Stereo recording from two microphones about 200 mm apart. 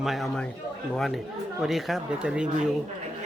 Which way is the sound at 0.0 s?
Centre (ahead or behind).